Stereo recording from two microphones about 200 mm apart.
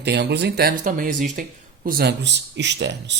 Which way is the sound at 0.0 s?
55° right (ahead or behind).